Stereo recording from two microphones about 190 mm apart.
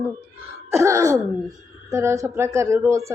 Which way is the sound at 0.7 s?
15° right (ahead or behind).